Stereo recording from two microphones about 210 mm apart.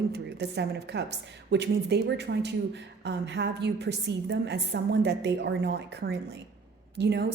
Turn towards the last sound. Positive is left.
turn(degrees=-55)  # may be behind; listen again after turning